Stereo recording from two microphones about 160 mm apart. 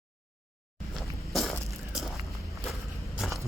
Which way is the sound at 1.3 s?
Centre (ahead or behind).